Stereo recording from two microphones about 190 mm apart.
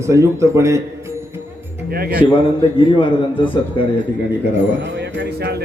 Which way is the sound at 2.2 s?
25° left (ahead or behind).